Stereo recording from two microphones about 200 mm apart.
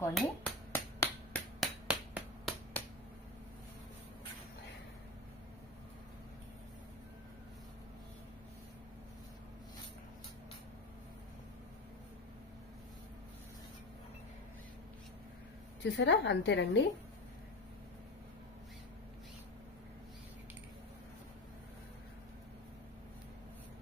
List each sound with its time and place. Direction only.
0.0 s finger snapping: 5° left (ahead or behind)
1.6 s finger snapping: centre (ahead or behind)
15.8 s a woman's voice: 65° left (ahead or behind)